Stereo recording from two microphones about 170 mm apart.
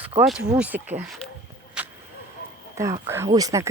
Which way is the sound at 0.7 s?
60° right (ahead or behind).